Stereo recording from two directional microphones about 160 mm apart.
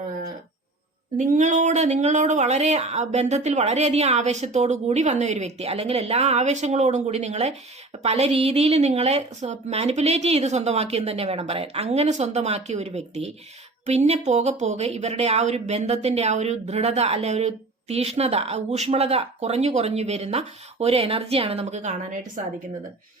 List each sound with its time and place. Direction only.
1.1 s a woman's voice: 50° right (ahead or behind)